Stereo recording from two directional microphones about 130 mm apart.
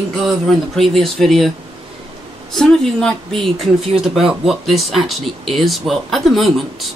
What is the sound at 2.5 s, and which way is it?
Speech, 5° left (ahead or behind).